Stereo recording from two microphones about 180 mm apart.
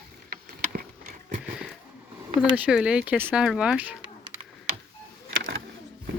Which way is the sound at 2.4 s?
5° right (ahead or behind).